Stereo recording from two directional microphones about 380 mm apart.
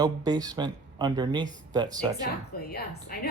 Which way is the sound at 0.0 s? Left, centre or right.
Centre.